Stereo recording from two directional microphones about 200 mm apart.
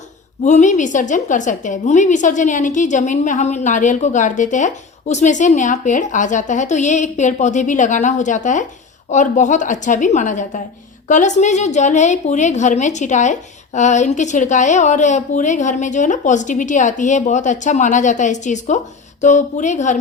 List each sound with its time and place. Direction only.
0.4 s a woman's voice: 35° left (ahead or behind)